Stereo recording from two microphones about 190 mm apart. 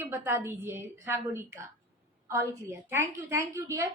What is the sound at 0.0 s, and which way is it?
A woman's voice, 10° right (ahead or behind).